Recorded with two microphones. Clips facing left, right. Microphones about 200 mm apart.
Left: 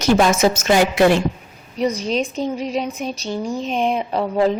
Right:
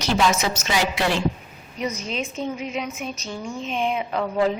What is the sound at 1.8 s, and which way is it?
A woman's voice, 35° left (ahead or behind).